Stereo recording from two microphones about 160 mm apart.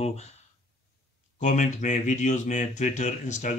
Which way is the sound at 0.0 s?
40° left (ahead or behind).